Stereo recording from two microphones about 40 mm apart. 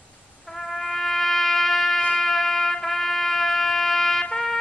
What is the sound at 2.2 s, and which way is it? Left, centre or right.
Trumpet, centre.